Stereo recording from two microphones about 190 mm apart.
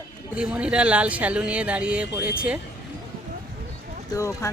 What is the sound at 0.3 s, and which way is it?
Speech, 5° right (ahead or behind).